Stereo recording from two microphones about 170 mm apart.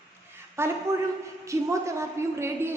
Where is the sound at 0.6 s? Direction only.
15° right (ahead or behind).